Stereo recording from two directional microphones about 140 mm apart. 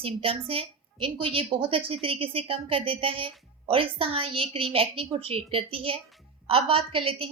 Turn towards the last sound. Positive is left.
turn(degrees=-40)  # may be behind; listen again after turning